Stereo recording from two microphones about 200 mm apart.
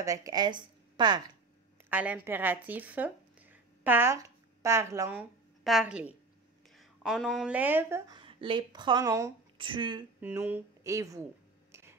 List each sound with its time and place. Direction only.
0.0 s speech: 15° right (ahead or behind)
1.9 s speech: 10° right (ahead or behind)
5.6 s a woman's voice: centre (ahead or behind)
8.1 s speech: 25° right (ahead or behind)
10.2 s speech: 10° right (ahead or behind)